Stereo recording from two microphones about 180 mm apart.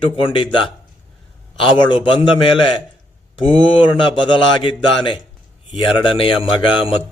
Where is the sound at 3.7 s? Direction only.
25° left (ahead or behind).